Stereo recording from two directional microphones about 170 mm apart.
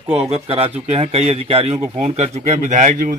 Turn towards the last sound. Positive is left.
turn(degrees=-50)  # may be behind; listen again after turning